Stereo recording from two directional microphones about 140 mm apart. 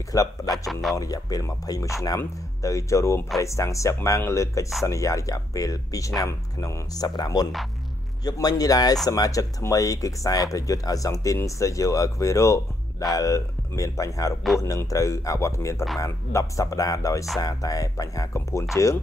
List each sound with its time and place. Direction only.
0.1 s speech: 25° left (ahead or behind)
0.7 s speech: centre (ahead or behind)
0.9 s speech: 25° left (ahead or behind)